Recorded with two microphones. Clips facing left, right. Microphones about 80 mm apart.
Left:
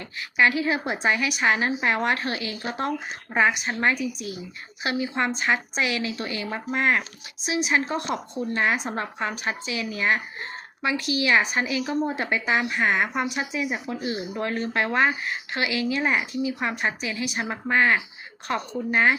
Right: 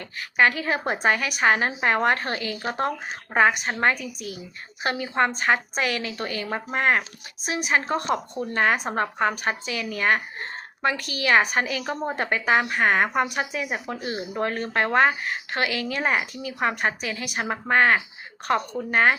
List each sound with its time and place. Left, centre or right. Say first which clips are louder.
0.2 s a woman's voice: even; right
3.3 s a woman's voice: right 2 dB; right